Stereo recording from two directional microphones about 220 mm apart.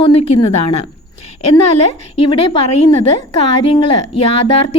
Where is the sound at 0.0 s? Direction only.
25° left (ahead or behind).